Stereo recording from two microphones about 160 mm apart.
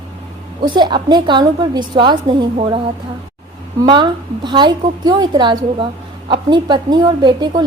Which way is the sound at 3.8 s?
30° right (ahead or behind).